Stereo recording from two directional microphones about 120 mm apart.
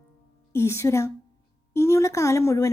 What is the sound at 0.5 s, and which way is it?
A woman's voice, 25° left (ahead or behind).